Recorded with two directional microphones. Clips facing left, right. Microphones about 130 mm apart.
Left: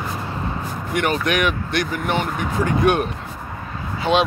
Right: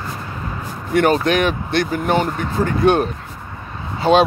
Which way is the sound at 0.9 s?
35° right (ahead or behind).